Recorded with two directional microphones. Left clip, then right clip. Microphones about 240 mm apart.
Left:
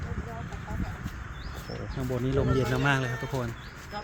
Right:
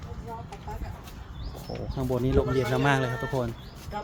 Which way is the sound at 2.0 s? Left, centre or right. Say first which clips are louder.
Right 4 dB; centre.